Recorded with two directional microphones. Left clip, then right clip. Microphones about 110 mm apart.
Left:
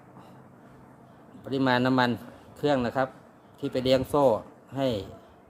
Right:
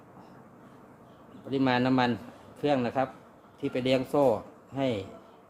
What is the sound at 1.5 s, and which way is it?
A man's voice, 55° left (ahead or behind).